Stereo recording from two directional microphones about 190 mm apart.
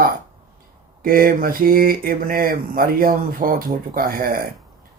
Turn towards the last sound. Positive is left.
turn(degrees=-50)  # may be behind; listen again after turning